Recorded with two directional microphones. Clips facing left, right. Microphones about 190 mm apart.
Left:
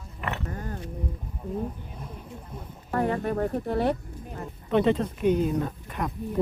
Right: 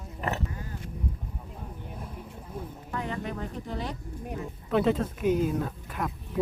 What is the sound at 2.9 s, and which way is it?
Music, 55° left (ahead or behind).